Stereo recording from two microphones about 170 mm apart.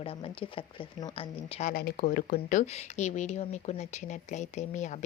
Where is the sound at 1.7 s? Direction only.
60° left (ahead or behind).